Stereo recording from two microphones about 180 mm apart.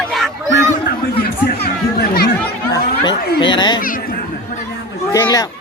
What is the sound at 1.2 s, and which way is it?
Chatter, 60° left (ahead or behind).